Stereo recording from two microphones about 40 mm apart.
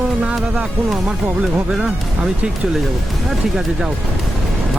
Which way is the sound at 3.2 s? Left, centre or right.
Centre.